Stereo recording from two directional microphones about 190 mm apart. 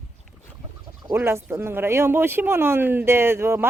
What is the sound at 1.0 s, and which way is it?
Speech, 10° right (ahead or behind).